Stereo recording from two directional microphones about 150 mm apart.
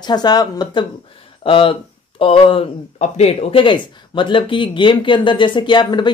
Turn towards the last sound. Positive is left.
turn(degrees=30)  # may be behind; listen again after turning